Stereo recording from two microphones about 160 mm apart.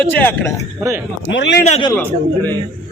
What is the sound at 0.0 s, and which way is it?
Speech, 10° left (ahead or behind).